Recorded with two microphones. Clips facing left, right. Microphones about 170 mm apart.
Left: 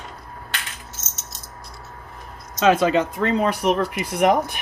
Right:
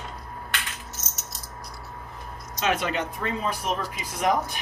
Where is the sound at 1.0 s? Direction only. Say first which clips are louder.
Right 1 dB; 25° left (ahead or behind).